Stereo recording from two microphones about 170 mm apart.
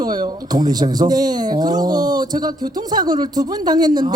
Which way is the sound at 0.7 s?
25° right (ahead or behind).